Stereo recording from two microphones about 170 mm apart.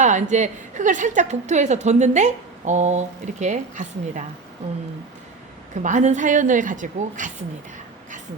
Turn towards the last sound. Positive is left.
turn(degrees=-50)  # may be behind; listen again after turning